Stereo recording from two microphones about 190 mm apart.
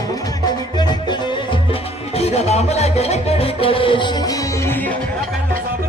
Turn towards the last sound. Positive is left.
turn(degrees=25)  # may be behind; listen again after turning